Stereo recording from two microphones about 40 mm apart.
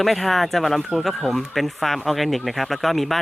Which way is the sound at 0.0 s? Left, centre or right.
Centre.